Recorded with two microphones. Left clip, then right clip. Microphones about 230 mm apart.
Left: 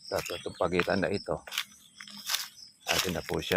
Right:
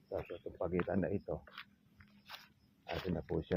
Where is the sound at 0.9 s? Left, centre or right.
Left.